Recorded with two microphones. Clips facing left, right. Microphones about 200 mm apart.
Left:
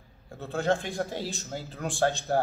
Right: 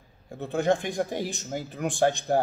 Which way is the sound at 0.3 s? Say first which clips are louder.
Right 3 dB; 15° right (ahead or behind).